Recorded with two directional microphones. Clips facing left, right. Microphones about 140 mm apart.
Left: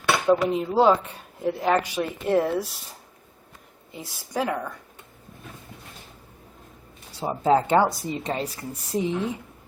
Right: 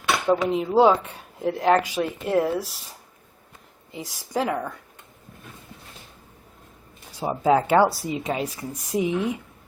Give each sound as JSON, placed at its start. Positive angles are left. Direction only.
{"t": 0.3, "sound": "speech", "side_deg": 0}
{"t": 3.9, "sound": "speech", "side_deg": -15}
{"t": 7.2, "sound": "speech", "side_deg": -10}